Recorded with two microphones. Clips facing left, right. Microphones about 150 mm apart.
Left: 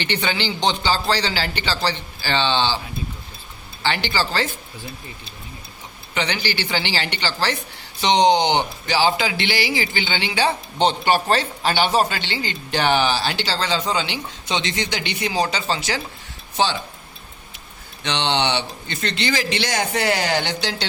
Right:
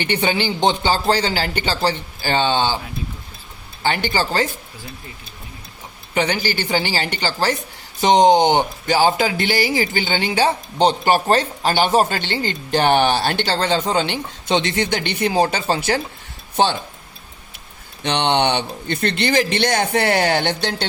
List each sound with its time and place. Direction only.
0.3 s speech: 50° right (ahead or behind)
3.8 s speech: 45° right (ahead or behind)
6.1 s speech: 45° right (ahead or behind)
18.0 s speech: 55° right (ahead or behind)